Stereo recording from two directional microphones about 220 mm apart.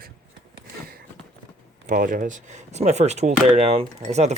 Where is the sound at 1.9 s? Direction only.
35° right (ahead or behind).